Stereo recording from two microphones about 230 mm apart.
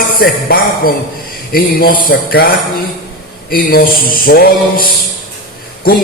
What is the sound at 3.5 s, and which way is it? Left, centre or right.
A man's voice, left.